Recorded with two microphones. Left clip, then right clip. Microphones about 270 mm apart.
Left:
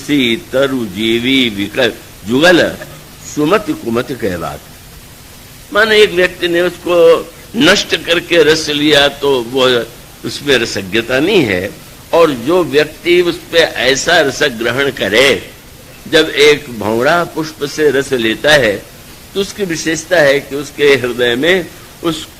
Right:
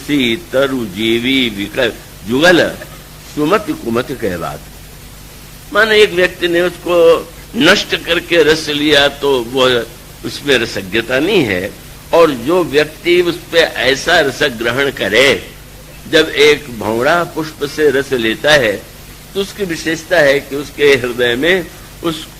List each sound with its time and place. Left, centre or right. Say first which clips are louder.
0.1 s a man's voice: left 1 dB; right
5.7 s a man's voice: left 1 dB; right